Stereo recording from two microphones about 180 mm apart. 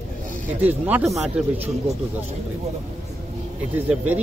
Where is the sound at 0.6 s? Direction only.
10° right (ahead or behind).